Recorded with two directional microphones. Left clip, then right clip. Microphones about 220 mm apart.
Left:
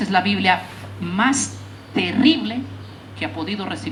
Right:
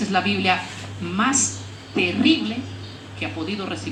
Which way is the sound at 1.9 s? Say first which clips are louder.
Left 1 dB; 50° left (ahead or behind).